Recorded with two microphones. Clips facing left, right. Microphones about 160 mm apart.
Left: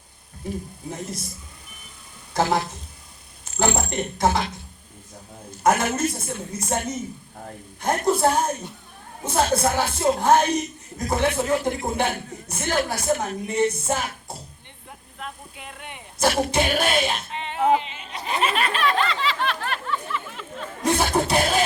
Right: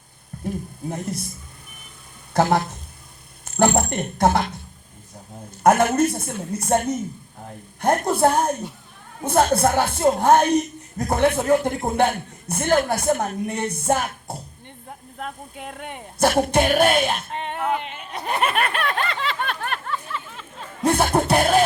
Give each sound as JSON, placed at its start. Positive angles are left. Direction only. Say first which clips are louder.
{"t": 0.5, "sound": "speech", "louder": "even", "side_deg": -55}
{"t": 2.3, "sound": "speech", "louder": "right 3 dB", "side_deg": -55}
{"t": 20.8, "sound": "music", "louder": "right 3 dB", "side_deg": -55}